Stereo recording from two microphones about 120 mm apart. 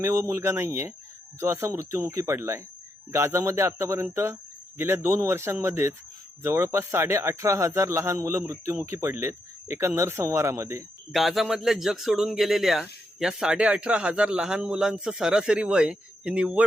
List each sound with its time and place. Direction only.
0.0 s speech: 25° right (ahead or behind)
11.1 s speech: centre (ahead or behind)